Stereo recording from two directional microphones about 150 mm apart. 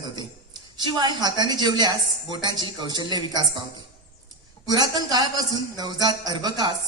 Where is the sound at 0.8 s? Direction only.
30° right (ahead or behind).